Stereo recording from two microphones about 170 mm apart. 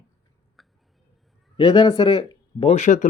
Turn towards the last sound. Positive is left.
turn(degrees=45)  # may be behind; listen again after turning